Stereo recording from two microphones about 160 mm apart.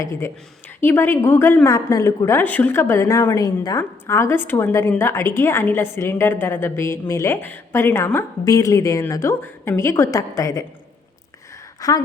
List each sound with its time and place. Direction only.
0.0 s a woman's voice: 20° left (ahead or behind)
11.8 s a woman's voice: 20° left (ahead or behind)